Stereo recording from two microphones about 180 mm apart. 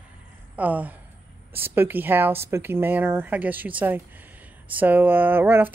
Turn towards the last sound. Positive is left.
turn(degrees=-10)  # may be behind; listen again after turning